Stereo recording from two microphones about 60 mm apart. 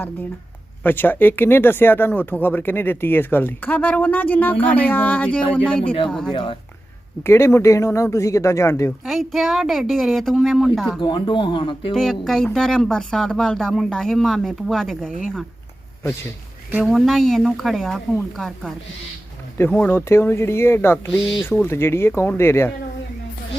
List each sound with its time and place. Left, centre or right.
0.8 s speech: left; by 6.3 s centre
7.3 s speech: left
9.0 s speech: centre
16.8 s speech: centre
19.9 s speech: left